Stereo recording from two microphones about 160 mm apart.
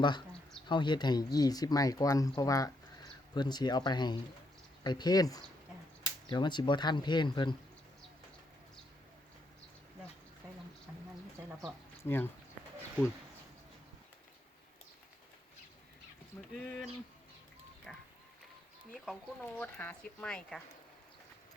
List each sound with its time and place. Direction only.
0.7 s speech: 30° left (ahead or behind)
12.0 s speech: 15° left (ahead or behind)
16.4 s speech: centre (ahead or behind)
17.9 s a sound: 5° left (ahead or behind)
18.9 s speech: 5° left (ahead or behind)